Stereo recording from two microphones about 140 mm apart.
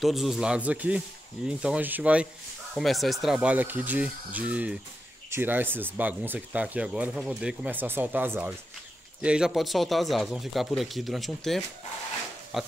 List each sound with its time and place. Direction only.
0.0 s speech: centre (ahead or behind)
2.7 s speech: centre (ahead or behind)